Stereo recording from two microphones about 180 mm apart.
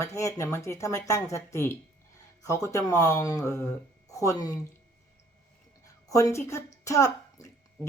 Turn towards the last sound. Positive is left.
turn(degrees=20)  # may be behind; listen again after turning